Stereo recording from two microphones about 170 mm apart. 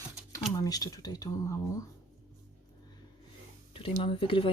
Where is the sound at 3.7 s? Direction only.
30° left (ahead or behind).